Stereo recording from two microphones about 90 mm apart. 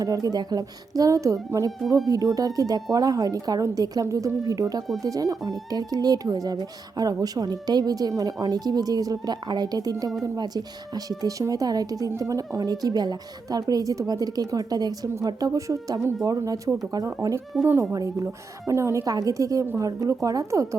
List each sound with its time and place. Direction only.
0.0 s a woman's voice: 40° right (ahead or behind); by 17.8 s 25° right (ahead or behind)
17.9 s a woman's voice: 40° right (ahead or behind)